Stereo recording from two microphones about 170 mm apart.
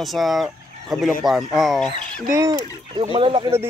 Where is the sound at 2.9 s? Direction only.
30° right (ahead or behind).